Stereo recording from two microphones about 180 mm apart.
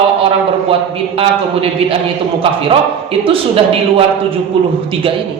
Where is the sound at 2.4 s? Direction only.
30° right (ahead or behind).